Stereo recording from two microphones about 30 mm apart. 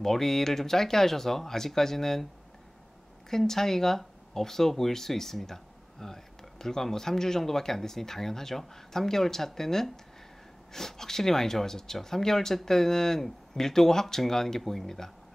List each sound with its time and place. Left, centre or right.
0.0 s speech: centre
3.3 s speech: centre